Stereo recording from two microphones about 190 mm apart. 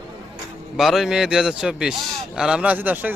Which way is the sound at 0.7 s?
Centre (ahead or behind).